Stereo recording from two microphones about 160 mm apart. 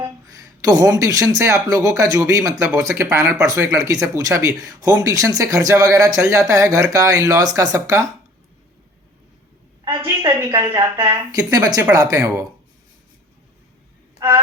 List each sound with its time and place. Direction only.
0.0 s speech: 20° right (ahead or behind)
10.0 s a woman's voice: 20° right (ahead or behind)
14.2 s speech: 15° right (ahead or behind)